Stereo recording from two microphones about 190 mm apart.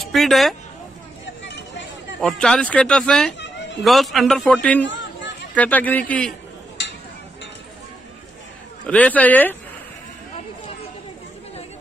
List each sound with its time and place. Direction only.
0.0 s speech: centre (ahead or behind)
1.2 s vehicle: 70° left (ahead or behind)
2.1 s speech: centre (ahead or behind)
3.3 s a sound: 70° left (ahead or behind)
3.8 s speech: centre (ahead or behind)
4.8 s chatter: 75° left (ahead or behind)
5.5 s a man's voice: 10° left (ahead or behind)
6.8 s a sound: 65° left (ahead or behind)
8.8 s a man's voice: 10° left (ahead or behind)